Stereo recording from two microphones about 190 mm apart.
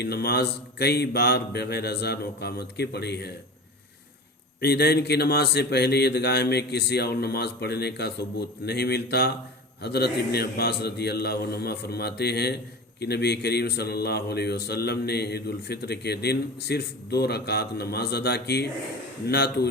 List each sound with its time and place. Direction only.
0.0 s speech: 55° left (ahead or behind)
4.6 s speech: 55° left (ahead or behind)